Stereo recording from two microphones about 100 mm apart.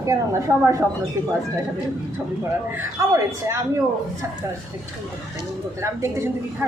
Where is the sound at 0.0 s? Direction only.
30° right (ahead or behind).